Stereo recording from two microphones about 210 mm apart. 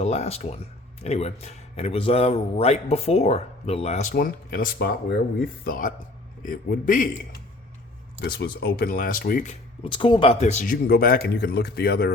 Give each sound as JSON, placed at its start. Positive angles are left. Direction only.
{"t": 0.0, "sound": "a man's voice", "side_deg": 30}
{"t": 4.1, "sound": "a man's voice", "side_deg": 45}
{"t": 8.2, "sound": "speech", "side_deg": 50}
{"t": 9.8, "sound": "speech", "side_deg": 25}